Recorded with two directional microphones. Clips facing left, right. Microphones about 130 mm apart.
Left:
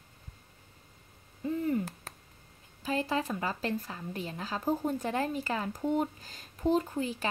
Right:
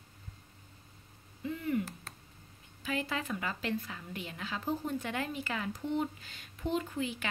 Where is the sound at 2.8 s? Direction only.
35° left (ahead or behind).